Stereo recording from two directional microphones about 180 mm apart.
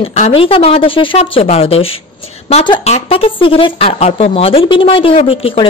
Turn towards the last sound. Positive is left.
turn(degrees=30)  # may be behind; listen again after turning